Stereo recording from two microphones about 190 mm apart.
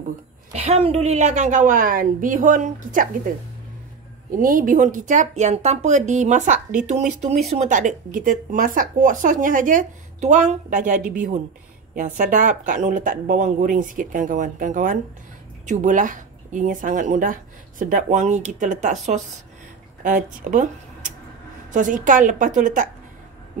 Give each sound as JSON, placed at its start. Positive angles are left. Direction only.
{"t": 0.5, "sound": "speech", "side_deg": -35}
{"t": 4.4, "sound": "speech", "side_deg": -45}